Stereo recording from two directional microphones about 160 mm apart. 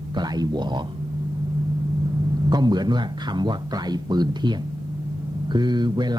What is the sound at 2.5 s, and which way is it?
Speech, 25° right (ahead or behind).